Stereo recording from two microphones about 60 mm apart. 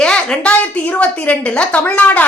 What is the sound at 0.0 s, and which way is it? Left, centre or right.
A woman's voice, centre.